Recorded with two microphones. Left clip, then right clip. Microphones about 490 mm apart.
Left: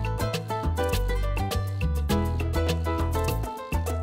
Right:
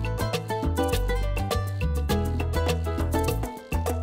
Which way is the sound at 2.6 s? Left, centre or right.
Right.